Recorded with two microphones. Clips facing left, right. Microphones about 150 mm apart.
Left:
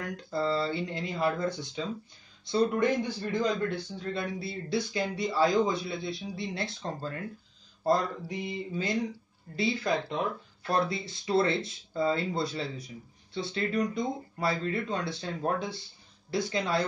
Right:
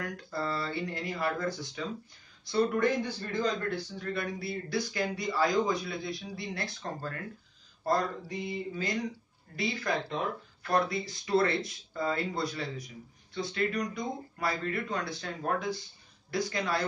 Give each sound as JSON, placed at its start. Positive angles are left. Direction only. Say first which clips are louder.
{"t": 0.3, "sound": "a man's voice", "louder": "left 6 dB", "side_deg": 25}